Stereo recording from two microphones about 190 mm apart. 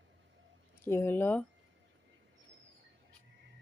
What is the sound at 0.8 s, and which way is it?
Speech, 10° left (ahead or behind).